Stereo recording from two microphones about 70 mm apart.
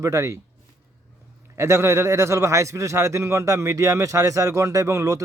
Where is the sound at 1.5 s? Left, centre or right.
Right.